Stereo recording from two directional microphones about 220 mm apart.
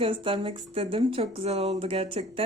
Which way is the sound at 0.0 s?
25° right (ahead or behind).